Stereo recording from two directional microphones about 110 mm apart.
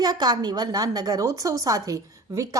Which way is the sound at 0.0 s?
40° right (ahead or behind).